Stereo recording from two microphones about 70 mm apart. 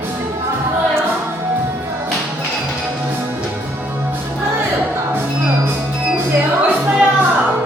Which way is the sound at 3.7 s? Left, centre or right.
Right.